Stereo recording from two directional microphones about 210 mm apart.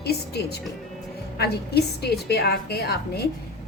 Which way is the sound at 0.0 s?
50° left (ahead or behind).